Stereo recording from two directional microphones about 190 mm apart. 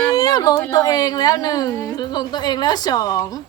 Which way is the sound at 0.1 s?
20° left (ahead or behind).